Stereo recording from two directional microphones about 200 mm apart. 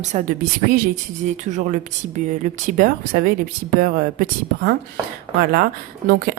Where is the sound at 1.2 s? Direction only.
35° right (ahead or behind).